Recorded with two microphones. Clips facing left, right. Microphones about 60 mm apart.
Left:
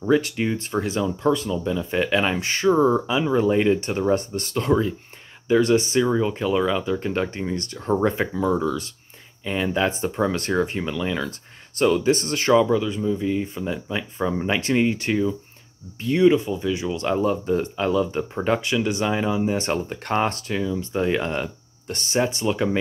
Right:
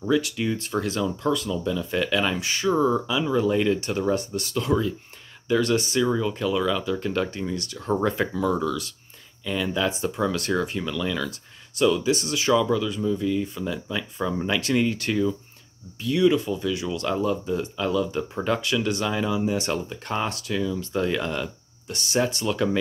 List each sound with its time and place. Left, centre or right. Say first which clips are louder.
0.1 s speech: left 3 dB; left
9.4 s speech: left 3 dB; left
11.2 s speech: left 1 dB; left
12.7 s speech: left 2 dB; left
16.0 s speech: left 3 dB; left
22.2 s speech: left 2 dB; left